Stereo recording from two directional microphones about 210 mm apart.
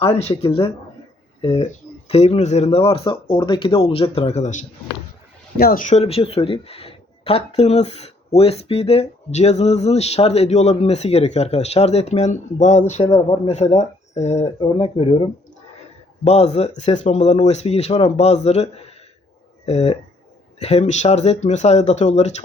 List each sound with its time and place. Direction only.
0.0 s speech: 30° left (ahead or behind)
5.5 s speech: 45° left (ahead or behind)
13.0 s speech: 25° left (ahead or behind)